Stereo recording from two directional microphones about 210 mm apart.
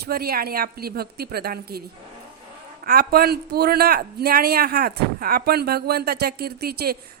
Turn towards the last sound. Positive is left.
turn(degrees=-50)  # may be behind; listen again after turning